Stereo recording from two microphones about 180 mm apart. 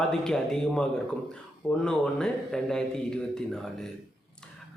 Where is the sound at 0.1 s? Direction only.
5° left (ahead or behind).